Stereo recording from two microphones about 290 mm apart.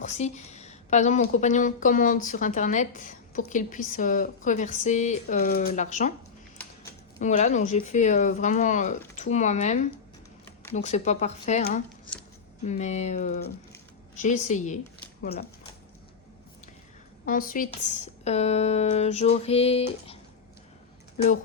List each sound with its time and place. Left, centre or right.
0.0 s a woman's voice: left
7.2 s a woman's voice: left
17.2 s a woman's voice: left